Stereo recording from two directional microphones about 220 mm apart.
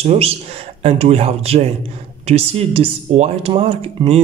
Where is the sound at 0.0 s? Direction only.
30° right (ahead or behind).